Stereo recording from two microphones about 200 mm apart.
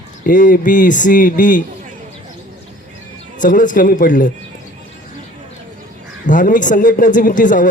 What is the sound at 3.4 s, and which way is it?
Speech, 40° left (ahead or behind).